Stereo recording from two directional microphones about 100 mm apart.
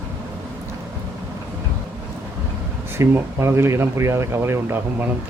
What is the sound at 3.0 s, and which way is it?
Speech, 25° right (ahead or behind).